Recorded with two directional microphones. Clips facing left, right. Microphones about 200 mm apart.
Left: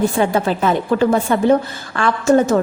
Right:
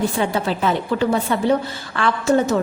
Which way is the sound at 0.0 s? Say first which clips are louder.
Left 4 dB; 50° left (ahead or behind).